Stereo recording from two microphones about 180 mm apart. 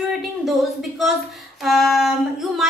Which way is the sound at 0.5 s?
Centre (ahead or behind).